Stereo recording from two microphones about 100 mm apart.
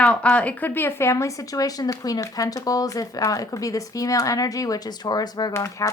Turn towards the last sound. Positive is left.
turn(degrees=30)  # may be behind; listen again after turning